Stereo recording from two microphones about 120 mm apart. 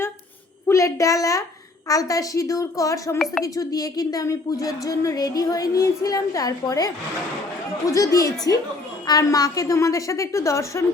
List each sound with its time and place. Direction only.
0.7 s speech: 25° left (ahead or behind)